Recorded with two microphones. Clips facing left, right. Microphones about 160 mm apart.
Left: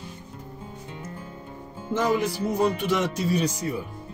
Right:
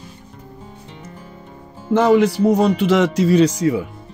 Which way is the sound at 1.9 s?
75° right (ahead or behind).